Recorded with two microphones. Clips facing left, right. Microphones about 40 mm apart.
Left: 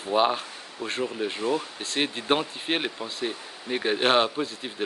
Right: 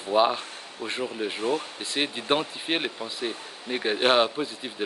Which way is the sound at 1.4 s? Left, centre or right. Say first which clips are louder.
Even; right.